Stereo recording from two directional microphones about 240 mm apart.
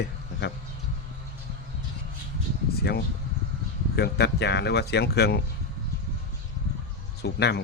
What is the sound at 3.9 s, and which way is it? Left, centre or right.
Speech, left.